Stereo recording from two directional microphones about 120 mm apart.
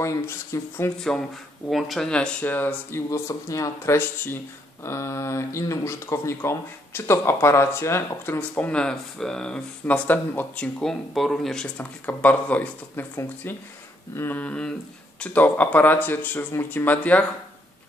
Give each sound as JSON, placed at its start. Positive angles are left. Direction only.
{"t": 0.0, "sound": "speech", "side_deg": 25}
{"t": 0.9, "sound": "speech", "side_deg": 5}